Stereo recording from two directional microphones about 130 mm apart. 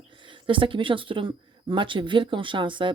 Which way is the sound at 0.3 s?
40° right (ahead or behind).